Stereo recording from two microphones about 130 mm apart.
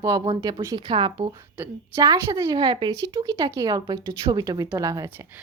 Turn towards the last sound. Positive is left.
turn(degrees=-25)  # may be behind; listen again after turning